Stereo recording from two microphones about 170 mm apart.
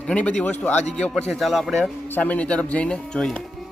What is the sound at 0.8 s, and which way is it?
Speech, 40° left (ahead or behind).